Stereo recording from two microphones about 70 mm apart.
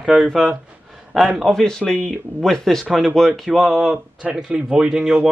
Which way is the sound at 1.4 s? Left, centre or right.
Centre.